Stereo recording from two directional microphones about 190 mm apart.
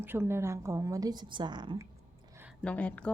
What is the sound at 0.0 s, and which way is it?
Speech, 10° right (ahead or behind).